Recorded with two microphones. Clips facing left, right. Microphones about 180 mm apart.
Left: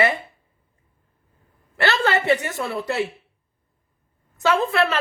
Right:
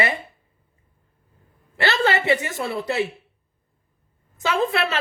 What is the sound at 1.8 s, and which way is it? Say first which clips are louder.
A woman's voice: even; 20° right (ahead or behind).